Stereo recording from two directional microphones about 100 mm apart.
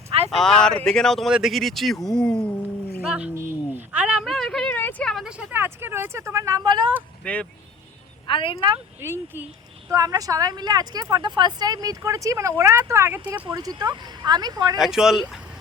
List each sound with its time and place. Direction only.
0.3 s a man's voice: 5° left (ahead or behind)
3.1 s speech: 10° right (ahead or behind)
3.3 s speech: 25° right (ahead or behind)
4.2 s a man's voice: 5° left (ahead or behind)
4.7 s a sound: 20° left (ahead or behind)
5.0 s a man's voice: centre (ahead or behind)
5.3 s speech: 15° right (ahead or behind); by 6.9 s 45° right (ahead or behind)
7.2 s speech: 15° left (ahead or behind)
8.3 s speech: 60° left (ahead or behind)
9.0 s speech: 25° right (ahead or behind)
9.9 s speech: 35° right (ahead or behind)
13.6 s speech: 40° right (ahead or behind)
14.8 s a man's voice: 5° right (ahead or behind)